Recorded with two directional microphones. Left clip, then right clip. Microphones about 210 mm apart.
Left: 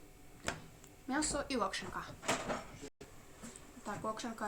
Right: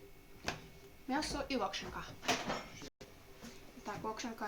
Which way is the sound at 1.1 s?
25° left (ahead or behind).